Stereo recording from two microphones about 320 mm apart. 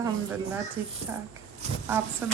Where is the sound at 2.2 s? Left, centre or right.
Centre.